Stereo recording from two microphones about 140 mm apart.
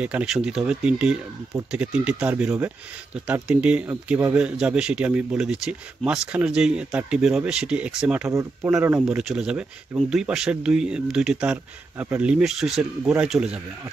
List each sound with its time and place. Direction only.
0.0 s a man's voice: 10° right (ahead or behind)
8.3 s speech: 20° right (ahead or behind)
8.7 s a man's voice: 10° right (ahead or behind)